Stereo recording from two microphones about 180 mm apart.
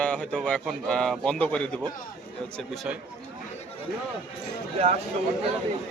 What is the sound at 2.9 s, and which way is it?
Speech, 5° right (ahead or behind).